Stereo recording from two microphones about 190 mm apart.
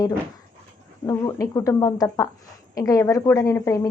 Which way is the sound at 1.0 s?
15° left (ahead or behind).